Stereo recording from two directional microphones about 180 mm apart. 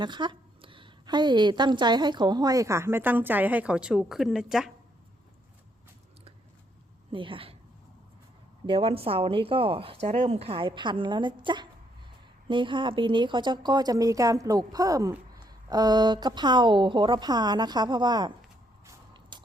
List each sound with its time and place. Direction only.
0.0 s a woman's voice: 25° right (ahead or behind); by 4.7 s 5° right (ahead or behind)
7.1 s a woman's voice: 30° right (ahead or behind)
8.6 s a woman's voice: 30° right (ahead or behind)
18.9 s biting: 25° right (ahead or behind)